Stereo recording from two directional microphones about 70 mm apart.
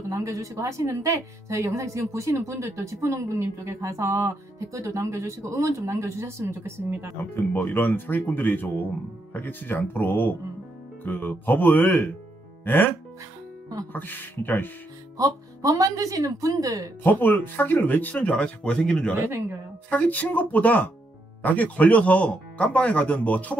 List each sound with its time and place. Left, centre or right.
0.1 s a woman's voice: right
7.3 s speech: left
13.9 s speech: left
15.1 s a woman's voice: right
17.0 s speech: left; by 19.1 s centre
19.1 s speech: right
19.9 s speech: left